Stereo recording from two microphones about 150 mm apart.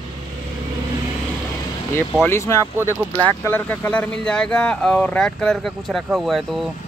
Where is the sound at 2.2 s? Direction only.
15° left (ahead or behind); by 6.7 s centre (ahead or behind).